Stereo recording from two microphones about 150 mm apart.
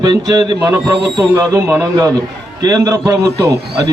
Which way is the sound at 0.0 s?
25° right (ahead or behind).